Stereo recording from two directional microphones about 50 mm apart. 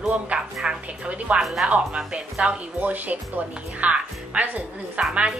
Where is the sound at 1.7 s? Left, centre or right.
Right.